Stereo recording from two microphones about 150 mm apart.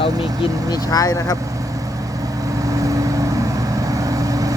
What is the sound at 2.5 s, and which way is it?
Vehicle, 20° right (ahead or behind).